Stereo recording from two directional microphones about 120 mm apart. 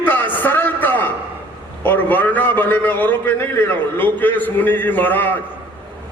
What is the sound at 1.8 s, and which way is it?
A man's voice, 15° left (ahead or behind).